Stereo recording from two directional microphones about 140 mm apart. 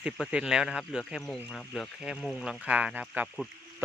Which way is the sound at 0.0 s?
5° right (ahead or behind).